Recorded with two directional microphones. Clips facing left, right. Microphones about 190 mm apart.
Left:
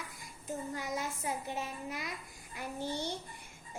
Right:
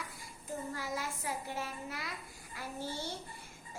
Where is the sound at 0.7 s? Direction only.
20° left (ahead or behind).